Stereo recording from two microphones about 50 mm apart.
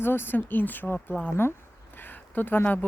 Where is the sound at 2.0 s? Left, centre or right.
Left.